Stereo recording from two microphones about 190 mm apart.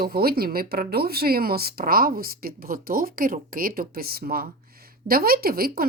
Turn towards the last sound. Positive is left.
turn(degrees=-50)  # may be behind; listen again after turning